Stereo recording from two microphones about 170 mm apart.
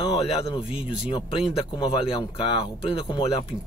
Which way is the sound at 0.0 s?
35° left (ahead or behind).